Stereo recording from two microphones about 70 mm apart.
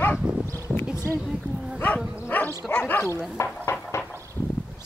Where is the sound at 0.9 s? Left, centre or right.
Left.